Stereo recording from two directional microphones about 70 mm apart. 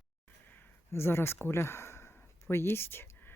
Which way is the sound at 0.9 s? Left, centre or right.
Left.